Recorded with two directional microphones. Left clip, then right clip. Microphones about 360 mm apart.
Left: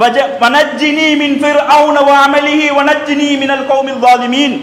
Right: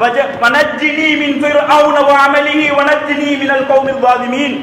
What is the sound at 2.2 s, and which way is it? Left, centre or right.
Speech, left.